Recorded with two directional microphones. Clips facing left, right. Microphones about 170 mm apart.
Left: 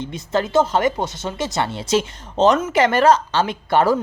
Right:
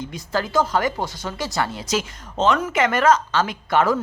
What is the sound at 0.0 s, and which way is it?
Speech, 25° left (ahead or behind).